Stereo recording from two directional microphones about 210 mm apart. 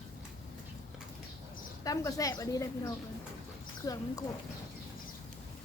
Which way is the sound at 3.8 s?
15° left (ahead or behind).